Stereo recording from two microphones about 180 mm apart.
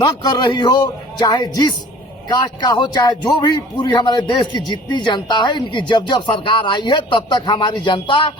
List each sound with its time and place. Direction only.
0.0 s speech: 20° left (ahead or behind)